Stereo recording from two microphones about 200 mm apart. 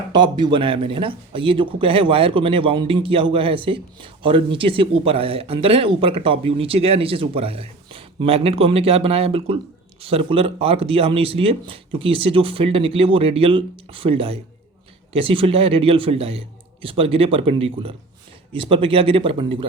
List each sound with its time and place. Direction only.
0.1 s speech: 20° right (ahead or behind)